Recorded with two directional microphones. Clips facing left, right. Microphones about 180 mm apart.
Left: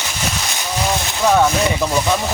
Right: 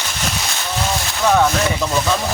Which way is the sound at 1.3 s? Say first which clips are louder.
Left 1 dB; 10° left (ahead or behind).